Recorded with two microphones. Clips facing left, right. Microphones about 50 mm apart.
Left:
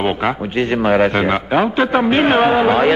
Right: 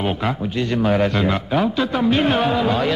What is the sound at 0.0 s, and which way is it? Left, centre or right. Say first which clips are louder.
A man's voice: left 4 dB; left.